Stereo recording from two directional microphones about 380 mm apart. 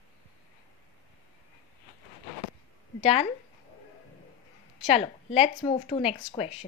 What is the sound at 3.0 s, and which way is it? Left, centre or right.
Speech, centre.